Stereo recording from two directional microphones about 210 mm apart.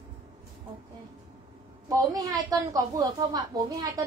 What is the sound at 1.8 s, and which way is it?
A woman's voice, 15° right (ahead or behind).